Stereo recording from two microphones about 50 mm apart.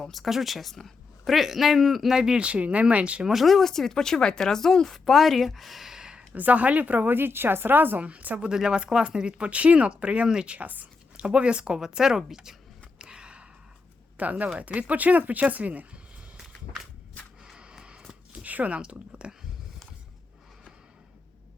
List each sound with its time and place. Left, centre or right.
0.0 s speech: centre
2.4 s speech: right
3.2 s speech: centre
6.3 s a woman's voice: right
8.0 s a woman's voice: right
8.4 s speech: centre; by 11.3 s right
11.3 s speech: right
11.8 s speech: centre
13.0 s a sound: centre
14.2 s a woman's voice: right
17.4 s a sound: centre
18.3 s zipper: right
18.8 s speech: right